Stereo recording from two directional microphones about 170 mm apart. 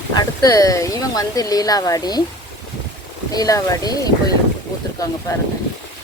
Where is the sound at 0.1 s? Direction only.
20° left (ahead or behind).